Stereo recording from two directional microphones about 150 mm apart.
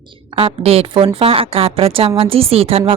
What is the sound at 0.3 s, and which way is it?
A woman's voice, 40° right (ahead or behind).